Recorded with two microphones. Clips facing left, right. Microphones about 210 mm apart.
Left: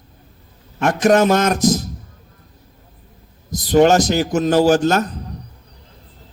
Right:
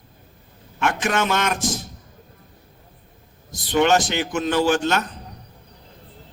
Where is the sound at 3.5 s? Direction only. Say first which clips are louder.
Left 6 dB; 40° left (ahead or behind).